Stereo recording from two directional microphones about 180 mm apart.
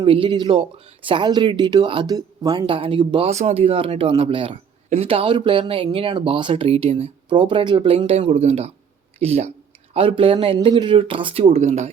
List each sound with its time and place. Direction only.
0.0 s speech: 30° right (ahead or behind)